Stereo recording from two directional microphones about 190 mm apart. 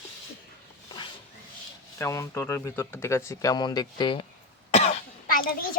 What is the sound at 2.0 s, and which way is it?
Speech, 15° left (ahead or behind).